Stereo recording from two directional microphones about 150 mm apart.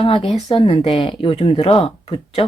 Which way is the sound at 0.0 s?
40° left (ahead or behind).